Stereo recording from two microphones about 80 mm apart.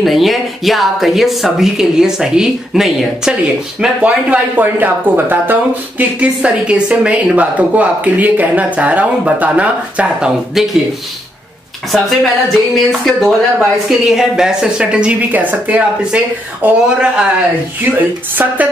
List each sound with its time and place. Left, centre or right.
0.0 s speech: centre
4.0 s speech: centre
11.9 s speech: centre; by 18.7 s right